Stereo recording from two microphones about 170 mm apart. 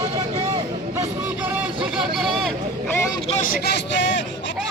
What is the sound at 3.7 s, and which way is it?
Vehicle, 90° left.